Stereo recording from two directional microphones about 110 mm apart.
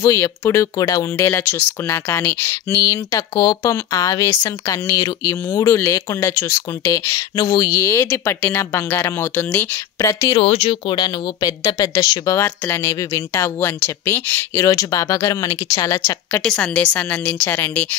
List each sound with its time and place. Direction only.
0.0 s speech: 25° left (ahead or behind)
1.1 s speech: 25° left (ahead or behind)
2.9 s speech: 30° left (ahead or behind)
9.9 s speech: 30° left (ahead or behind)
10.3 s speech: 55° left (ahead or behind)
11.4 s speech: 30° left (ahead or behind)
16.3 s a woman's voice: 10° left (ahead or behind)